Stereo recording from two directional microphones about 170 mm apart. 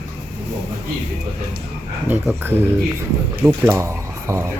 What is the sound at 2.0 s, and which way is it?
Speech, 10° right (ahead or behind).